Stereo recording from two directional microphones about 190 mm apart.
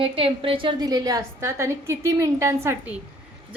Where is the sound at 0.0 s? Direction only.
30° right (ahead or behind).